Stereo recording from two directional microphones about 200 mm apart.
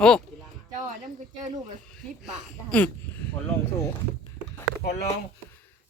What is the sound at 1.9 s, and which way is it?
Speech, centre (ahead or behind).